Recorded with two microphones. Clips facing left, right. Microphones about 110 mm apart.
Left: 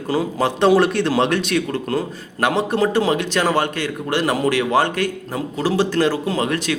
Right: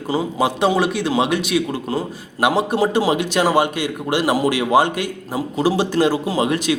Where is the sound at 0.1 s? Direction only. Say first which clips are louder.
Even; 5° right (ahead or behind).